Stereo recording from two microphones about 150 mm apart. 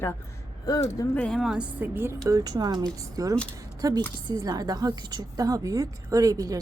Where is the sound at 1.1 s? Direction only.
5° left (ahead or behind); by 6.6 s 25° right (ahead or behind).